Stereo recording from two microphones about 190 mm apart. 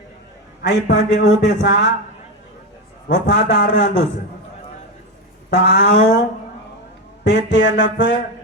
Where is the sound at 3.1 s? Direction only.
65° left (ahead or behind).